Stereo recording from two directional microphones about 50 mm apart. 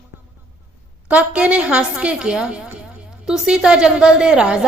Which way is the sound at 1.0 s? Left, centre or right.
Right.